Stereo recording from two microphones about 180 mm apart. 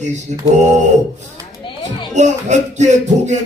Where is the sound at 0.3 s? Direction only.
40° right (ahead or behind).